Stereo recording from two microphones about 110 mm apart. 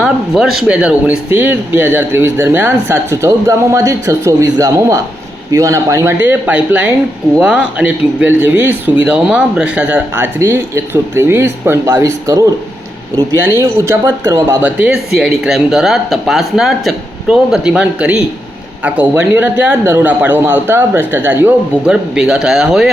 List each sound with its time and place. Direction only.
0.0 s speech: 5° right (ahead or behind); by 6.1 s 30° right (ahead or behind)
6.2 s speech: 15° right (ahead or behind)
14.6 s speech: 10° right (ahead or behind)